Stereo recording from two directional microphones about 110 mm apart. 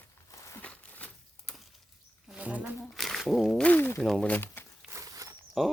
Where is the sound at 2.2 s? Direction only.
10° right (ahead or behind).